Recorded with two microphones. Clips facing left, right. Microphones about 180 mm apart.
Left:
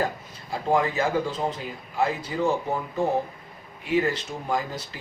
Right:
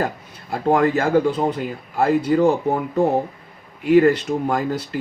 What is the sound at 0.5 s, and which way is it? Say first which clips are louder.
Speech: right 6 dB; 60° right (ahead or behind).